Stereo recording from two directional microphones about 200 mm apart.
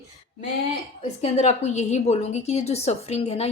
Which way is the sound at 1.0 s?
35° left (ahead or behind).